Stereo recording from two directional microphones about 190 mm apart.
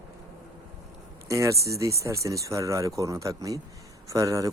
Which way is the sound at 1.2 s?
15° right (ahead or behind).